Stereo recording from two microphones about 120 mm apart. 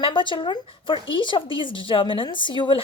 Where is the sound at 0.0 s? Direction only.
45° left (ahead or behind).